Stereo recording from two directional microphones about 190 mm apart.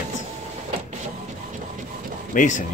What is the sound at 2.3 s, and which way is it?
Speech, 40° left (ahead or behind).